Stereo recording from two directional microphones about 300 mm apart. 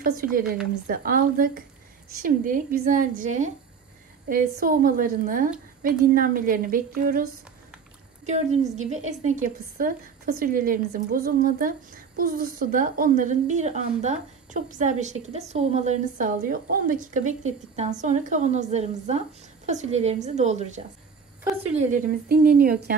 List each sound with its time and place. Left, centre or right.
0.0 s a woman's voice: right
8.3 s a woman's voice: right
21.9 s a woman's voice: right